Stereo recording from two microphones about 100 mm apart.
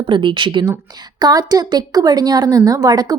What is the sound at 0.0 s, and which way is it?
Speech, 55° right (ahead or behind).